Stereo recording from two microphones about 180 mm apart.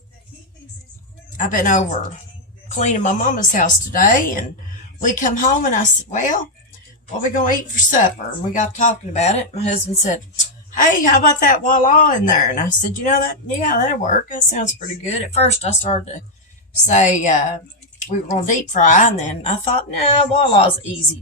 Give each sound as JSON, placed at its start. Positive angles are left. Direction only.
{"t": 1.4, "sound": "a woman's voice", "side_deg": 45}